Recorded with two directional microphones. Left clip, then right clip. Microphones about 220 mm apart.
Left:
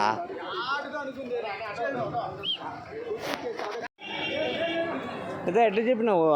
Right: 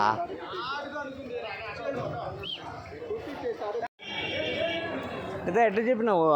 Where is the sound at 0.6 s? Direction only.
30° left (ahead or behind).